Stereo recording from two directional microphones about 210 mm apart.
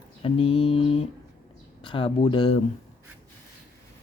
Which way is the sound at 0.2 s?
25° left (ahead or behind).